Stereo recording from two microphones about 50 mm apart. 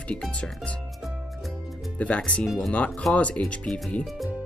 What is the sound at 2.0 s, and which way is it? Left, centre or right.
Speech, left.